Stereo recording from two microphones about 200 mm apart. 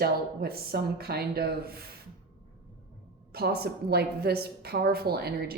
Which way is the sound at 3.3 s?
50° right (ahead or behind).